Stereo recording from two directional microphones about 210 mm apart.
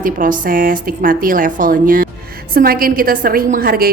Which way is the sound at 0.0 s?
40° right (ahead or behind).